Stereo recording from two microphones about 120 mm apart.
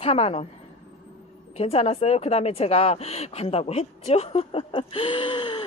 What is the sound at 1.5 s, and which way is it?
Speech, 55° left (ahead or behind).